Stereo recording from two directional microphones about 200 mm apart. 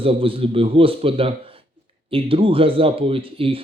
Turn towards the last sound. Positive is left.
turn(degrees=-25)  # may be behind; listen again after turning